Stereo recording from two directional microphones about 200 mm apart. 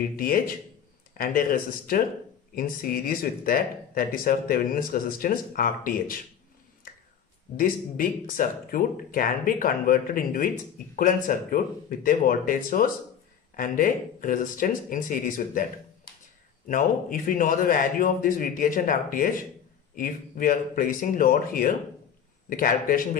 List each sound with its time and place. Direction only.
0.1 s speech: 45° left (ahead or behind)
7.5 s speech: 45° left (ahead or behind)
16.6 s speech: 40° left (ahead or behind)